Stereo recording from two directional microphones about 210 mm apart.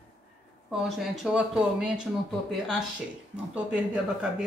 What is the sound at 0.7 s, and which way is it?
Speech, centre (ahead or behind).